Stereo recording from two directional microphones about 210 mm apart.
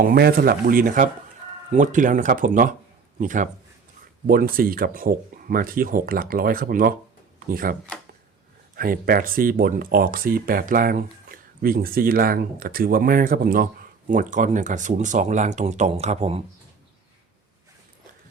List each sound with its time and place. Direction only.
0.0 s speech: 45° right (ahead or behind)